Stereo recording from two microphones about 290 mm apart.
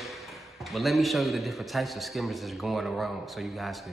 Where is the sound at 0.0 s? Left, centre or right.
Centre.